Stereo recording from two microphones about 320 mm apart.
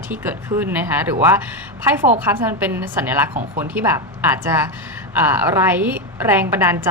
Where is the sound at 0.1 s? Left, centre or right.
Centre.